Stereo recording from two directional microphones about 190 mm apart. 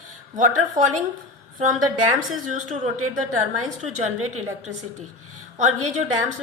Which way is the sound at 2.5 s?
40° right (ahead or behind).